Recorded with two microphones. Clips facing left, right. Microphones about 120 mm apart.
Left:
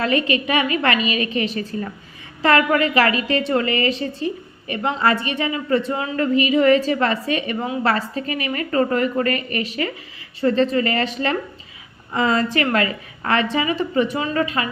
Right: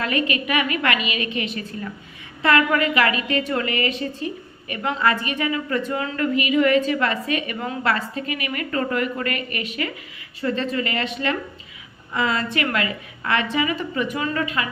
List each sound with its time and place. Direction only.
0.0 s a woman's voice: 30° left (ahead or behind)